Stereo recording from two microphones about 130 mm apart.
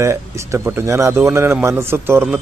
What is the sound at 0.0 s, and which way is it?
A man's voice, 20° right (ahead or behind).